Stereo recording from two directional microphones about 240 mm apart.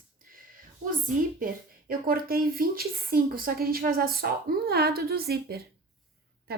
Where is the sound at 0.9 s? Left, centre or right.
Right.